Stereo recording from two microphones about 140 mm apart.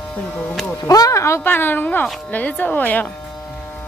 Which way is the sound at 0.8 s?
25° left (ahead or behind).